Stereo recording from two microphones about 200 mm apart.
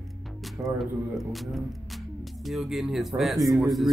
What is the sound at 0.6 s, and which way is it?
Speech, 15° right (ahead or behind).